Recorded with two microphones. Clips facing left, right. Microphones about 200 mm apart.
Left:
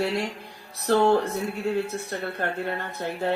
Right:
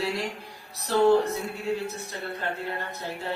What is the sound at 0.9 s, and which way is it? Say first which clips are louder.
Speech: left 3 dB; 55° left (ahead or behind).